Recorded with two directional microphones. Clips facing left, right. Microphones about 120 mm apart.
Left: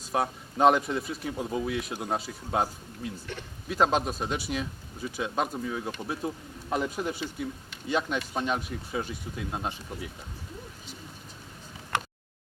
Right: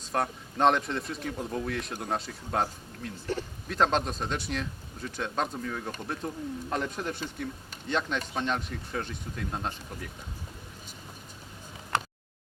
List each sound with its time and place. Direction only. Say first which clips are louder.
0.1 s a man's voice: left 1 dB; 5° left (ahead or behind)
3.3 s a man's voice: right 7 dB; 35° right (ahead or behind)
3.7 s a man's voice: left 1 dB; 5° left (ahead or behind)